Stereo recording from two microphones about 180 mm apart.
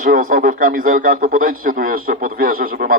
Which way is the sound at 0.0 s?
50° right (ahead or behind).